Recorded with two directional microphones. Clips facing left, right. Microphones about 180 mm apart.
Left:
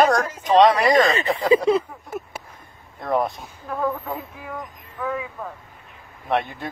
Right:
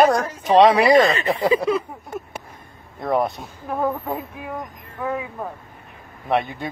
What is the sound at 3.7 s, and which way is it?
Speech, 20° right (ahead or behind).